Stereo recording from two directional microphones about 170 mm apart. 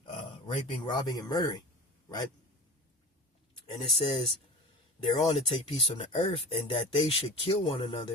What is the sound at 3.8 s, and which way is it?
Speech, 30° left (ahead or behind).